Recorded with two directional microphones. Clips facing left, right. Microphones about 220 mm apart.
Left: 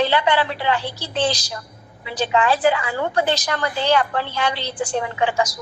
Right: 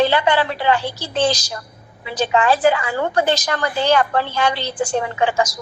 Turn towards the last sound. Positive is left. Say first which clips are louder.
# right 2 dB
turn(degrees=-45)  # may be behind; listen again after turning